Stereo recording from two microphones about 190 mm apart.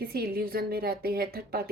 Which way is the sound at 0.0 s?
55° right (ahead or behind).